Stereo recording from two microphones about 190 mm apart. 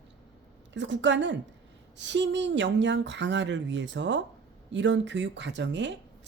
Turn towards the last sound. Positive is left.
turn(degrees=-70)  # may be behind; listen again after turning